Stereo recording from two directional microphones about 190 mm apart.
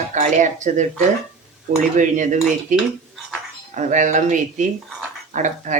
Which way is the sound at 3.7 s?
40° right (ahead or behind).